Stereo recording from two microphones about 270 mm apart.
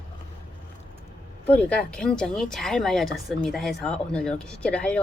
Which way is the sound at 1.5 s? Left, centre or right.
Centre.